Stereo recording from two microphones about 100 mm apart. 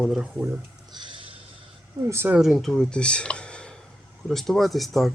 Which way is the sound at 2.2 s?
5° right (ahead or behind).